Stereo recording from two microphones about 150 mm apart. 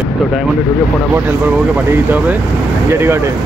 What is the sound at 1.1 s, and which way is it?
Speech, 15° right (ahead or behind).